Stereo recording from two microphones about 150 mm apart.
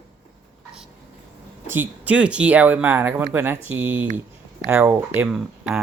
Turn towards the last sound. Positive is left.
turn(degrees=0)  # may be behind; listen again after turning